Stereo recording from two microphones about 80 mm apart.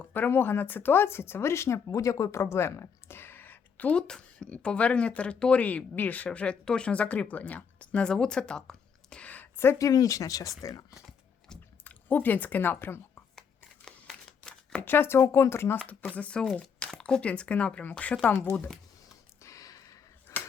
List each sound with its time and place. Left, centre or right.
0.0 s speech: left
9.7 s speech: left
11.9 s speech: left
14.8 s speech: left
16.1 s speech: centre
19.4 s a sound: left